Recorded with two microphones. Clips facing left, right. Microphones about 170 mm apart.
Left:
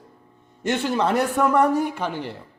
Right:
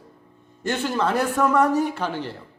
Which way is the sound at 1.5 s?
15° left (ahead or behind).